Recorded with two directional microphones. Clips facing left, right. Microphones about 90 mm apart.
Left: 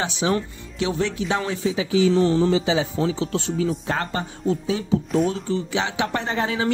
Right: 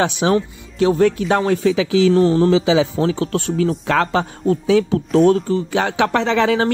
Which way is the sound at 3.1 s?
55° right (ahead or behind).